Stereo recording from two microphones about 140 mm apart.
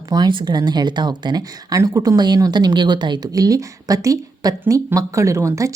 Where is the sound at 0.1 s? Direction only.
30° right (ahead or behind).